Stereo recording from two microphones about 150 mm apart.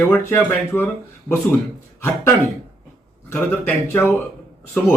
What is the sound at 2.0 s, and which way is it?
Speech, 15° left (ahead or behind).